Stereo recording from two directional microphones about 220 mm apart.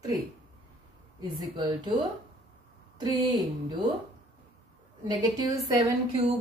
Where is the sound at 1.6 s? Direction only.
20° right (ahead or behind).